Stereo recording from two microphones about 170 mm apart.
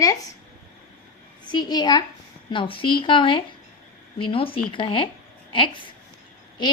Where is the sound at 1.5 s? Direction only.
25° left (ahead or behind).